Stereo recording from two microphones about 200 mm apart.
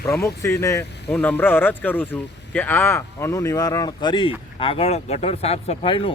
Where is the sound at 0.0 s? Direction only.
15° left (ahead or behind).